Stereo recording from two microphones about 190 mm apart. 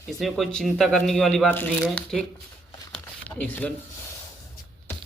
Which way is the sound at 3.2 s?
10° left (ahead or behind).